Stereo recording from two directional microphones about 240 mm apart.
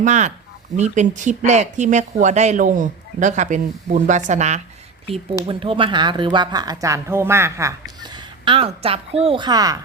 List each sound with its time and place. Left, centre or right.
0.0 s a woman's voice: right